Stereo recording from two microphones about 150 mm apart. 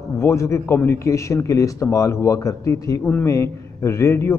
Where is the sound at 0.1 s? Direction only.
20° left (ahead or behind).